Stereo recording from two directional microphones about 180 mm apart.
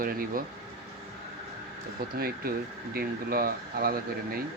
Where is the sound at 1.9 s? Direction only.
55° right (ahead or behind).